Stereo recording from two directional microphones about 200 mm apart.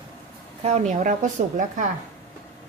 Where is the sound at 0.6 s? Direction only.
35° right (ahead or behind).